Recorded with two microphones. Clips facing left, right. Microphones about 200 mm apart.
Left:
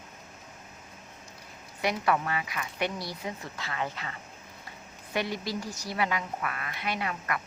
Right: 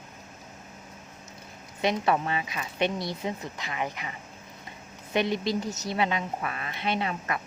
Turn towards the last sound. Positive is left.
turn(degrees=-25)  # may be behind; listen again after turning